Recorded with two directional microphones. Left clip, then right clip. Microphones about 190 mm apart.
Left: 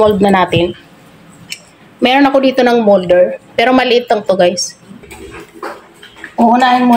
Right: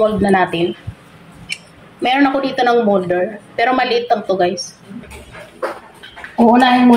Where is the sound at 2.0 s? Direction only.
55° left (ahead or behind).